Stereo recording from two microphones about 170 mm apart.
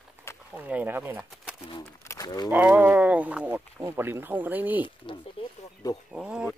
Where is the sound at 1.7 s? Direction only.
20° left (ahead or behind).